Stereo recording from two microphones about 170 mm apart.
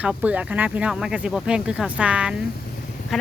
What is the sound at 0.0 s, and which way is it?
Speech, 10° right (ahead or behind).